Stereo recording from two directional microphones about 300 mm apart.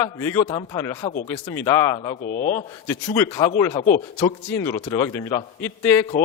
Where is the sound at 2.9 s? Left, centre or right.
Centre; by 4.3 s left.